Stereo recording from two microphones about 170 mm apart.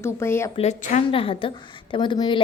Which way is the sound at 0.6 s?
40° left (ahead or behind).